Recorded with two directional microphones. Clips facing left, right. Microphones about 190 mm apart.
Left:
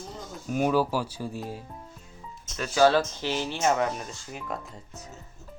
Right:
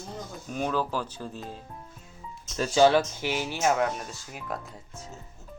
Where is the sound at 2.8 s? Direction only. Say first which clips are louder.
Even; 15° right (ahead or behind).